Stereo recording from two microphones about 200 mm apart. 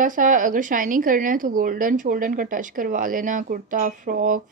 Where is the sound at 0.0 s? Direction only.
40° right (ahead or behind).